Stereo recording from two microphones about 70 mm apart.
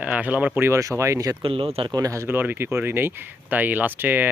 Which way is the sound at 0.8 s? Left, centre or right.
Right.